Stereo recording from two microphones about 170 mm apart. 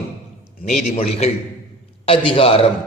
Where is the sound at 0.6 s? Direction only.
40° left (ahead or behind).